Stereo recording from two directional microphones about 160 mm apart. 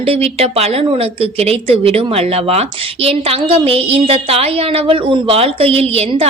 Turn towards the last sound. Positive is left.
turn(degrees=-40)  # may be behind; listen again after turning